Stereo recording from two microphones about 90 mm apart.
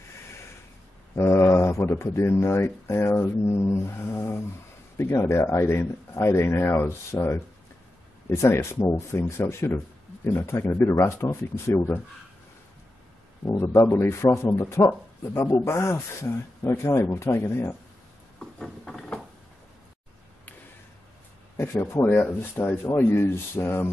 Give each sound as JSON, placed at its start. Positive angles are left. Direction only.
{"t": 1.1, "sound": "speech", "side_deg": 30}
{"t": 13.5, "sound": "speech", "side_deg": 30}
{"t": 18.4, "sound": "a sound", "side_deg": 5}
{"t": 21.7, "sound": "speech", "side_deg": 20}